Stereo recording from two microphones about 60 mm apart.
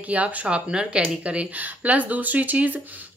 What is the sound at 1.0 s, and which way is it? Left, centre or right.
Speech, right.